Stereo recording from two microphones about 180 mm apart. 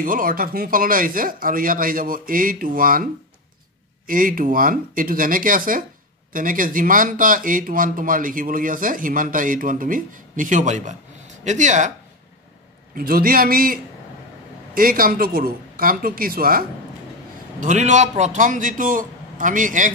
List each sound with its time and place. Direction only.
0.0 s speech: 50° right (ahead or behind)
4.1 s speech: 50° right (ahead or behind)
12.9 s a man's voice: 55° right (ahead or behind)
14.8 s speech: 55° right (ahead or behind)
17.6 s speech: 40° right (ahead or behind)